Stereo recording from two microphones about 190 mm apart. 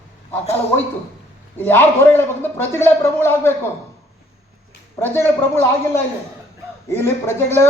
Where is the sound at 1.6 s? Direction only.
10° left (ahead or behind).